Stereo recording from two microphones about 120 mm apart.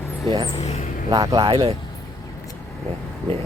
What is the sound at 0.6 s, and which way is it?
Speech, 60° left (ahead or behind).